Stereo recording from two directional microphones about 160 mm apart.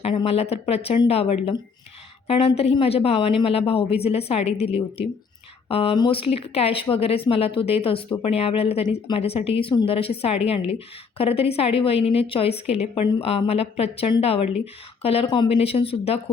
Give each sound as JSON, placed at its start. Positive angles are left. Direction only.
{"t": 0.0, "sound": "a woman's voice", "side_deg": 35}